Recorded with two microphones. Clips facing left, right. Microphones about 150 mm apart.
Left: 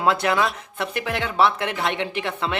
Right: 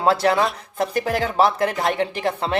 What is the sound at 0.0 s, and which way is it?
Speech, 35° right (ahead or behind).